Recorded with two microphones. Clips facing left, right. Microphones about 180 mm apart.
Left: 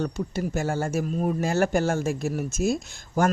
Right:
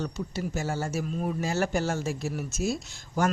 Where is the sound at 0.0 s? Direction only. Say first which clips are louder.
Left 4 dB; 55° left (ahead or behind).